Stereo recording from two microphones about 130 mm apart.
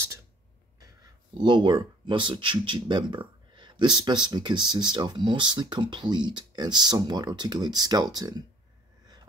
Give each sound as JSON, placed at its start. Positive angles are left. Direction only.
{"t": 1.4, "sound": "speech", "side_deg": -35}